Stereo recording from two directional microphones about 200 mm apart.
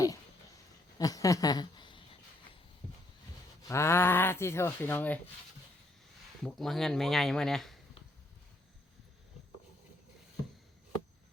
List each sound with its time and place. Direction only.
0.9 s speech: 20° left (ahead or behind)
3.7 s speech: 15° left (ahead or behind)
6.4 s speech: centre (ahead or behind)